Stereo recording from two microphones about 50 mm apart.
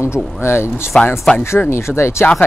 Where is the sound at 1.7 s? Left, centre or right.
Left.